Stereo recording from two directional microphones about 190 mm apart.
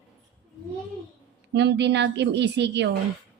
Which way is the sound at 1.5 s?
65° right (ahead or behind).